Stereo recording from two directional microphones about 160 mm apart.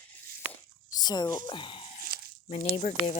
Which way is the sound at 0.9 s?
25° left (ahead or behind).